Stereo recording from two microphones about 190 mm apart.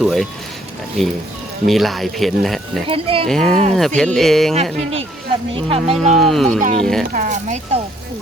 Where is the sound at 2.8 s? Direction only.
30° right (ahead or behind).